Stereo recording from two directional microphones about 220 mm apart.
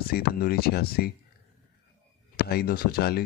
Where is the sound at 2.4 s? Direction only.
45° left (ahead or behind).